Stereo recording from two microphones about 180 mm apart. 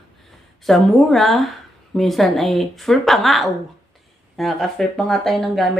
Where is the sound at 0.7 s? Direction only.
Centre (ahead or behind).